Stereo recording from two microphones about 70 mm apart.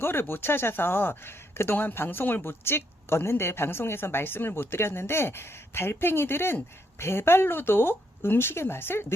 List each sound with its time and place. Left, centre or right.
0.0 s speech: left